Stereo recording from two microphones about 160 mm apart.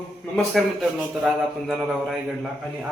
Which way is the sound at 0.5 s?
Centre (ahead or behind).